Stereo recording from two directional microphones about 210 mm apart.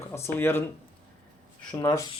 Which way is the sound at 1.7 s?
15° left (ahead or behind).